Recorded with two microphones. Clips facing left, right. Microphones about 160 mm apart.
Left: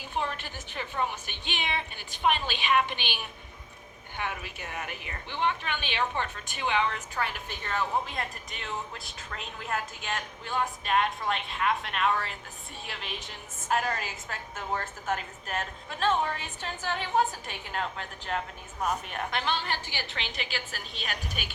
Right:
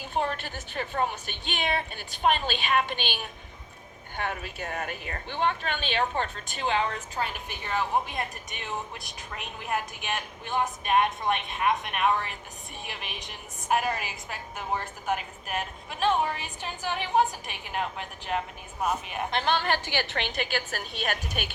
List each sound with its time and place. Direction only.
0.2 s a woman's voice: 45° right (ahead or behind)
4.2 s a woman's voice: 45° right (ahead or behind)
7.2 s a woman's voice: 15° right (ahead or behind)
19.5 s a woman's voice: 65° right (ahead or behind)